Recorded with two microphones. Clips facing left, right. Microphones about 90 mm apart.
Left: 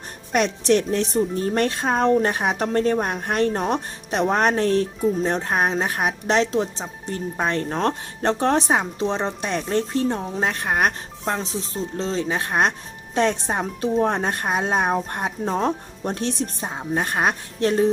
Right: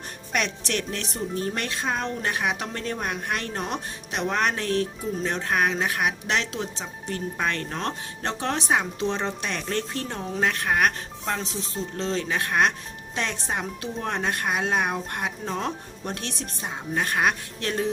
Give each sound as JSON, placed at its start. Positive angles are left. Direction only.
{"t": 0.3, "sound": "speech", "side_deg": 35}
{"t": 1.5, "sound": "speech", "side_deg": 45}
{"t": 7.8, "sound": "speech", "side_deg": 45}
{"t": 8.6, "sound": "speech", "side_deg": 30}